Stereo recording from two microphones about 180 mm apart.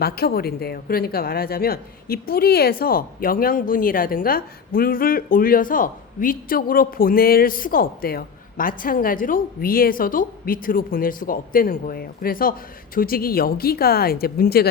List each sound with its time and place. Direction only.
0.0 s a woman's voice: 60° left (ahead or behind)